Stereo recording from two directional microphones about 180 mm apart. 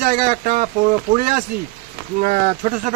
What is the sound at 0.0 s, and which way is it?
Speech, 50° right (ahead or behind).